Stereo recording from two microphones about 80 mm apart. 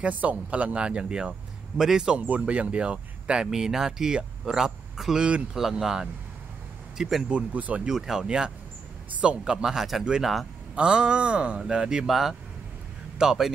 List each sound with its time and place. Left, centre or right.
0.0 s speech: centre
7.3 s speech: centre